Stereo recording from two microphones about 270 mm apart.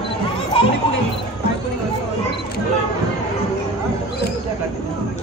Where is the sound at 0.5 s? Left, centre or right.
Centre.